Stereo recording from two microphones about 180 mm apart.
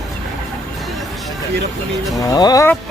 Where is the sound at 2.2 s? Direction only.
20° left (ahead or behind).